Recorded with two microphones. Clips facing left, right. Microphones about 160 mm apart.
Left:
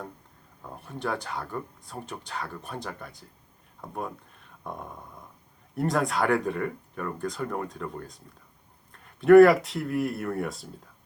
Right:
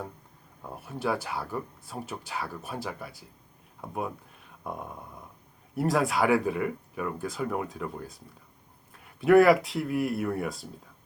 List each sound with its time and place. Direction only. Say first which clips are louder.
0.6 s speech: right 2 dB; 10° right (ahead or behind)